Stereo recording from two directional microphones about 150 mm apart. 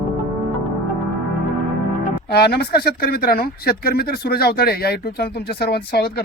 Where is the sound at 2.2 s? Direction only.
90° left.